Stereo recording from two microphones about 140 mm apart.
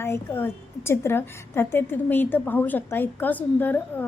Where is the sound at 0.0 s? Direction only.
15° left (ahead or behind).